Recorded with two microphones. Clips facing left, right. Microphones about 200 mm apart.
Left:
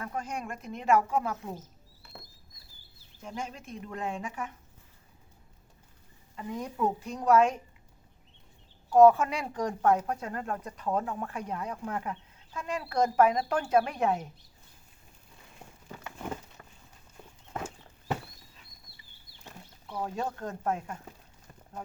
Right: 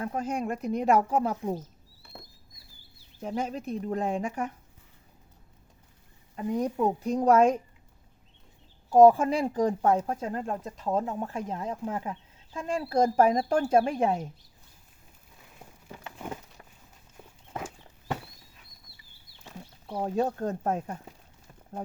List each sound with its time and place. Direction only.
0.0 s speech: 35° right (ahead or behind)
3.2 s speech: 40° right (ahead or behind)
6.6 s speech: 35° right (ahead or behind)
8.9 s speech: 30° right (ahead or behind)
16.1 s a sound: 5° right (ahead or behind)
17.2 s horse: 10° right (ahead or behind)
20.0 s speech: 35° right (ahead or behind)